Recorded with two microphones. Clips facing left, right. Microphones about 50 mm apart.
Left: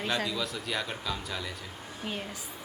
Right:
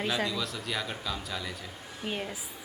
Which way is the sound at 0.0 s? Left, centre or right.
Centre.